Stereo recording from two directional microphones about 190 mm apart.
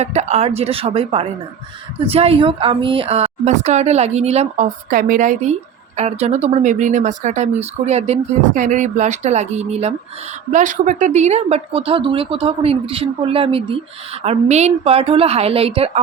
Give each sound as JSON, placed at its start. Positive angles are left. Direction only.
{"t": 0.0, "sound": "speech", "side_deg": -35}